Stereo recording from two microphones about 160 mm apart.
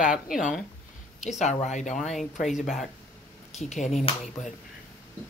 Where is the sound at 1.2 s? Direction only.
45° left (ahead or behind).